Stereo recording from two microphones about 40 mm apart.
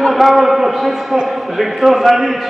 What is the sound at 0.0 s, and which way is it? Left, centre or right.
A man's voice, centre.